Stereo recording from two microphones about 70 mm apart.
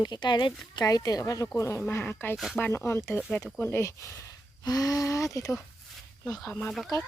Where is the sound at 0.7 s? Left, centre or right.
Left.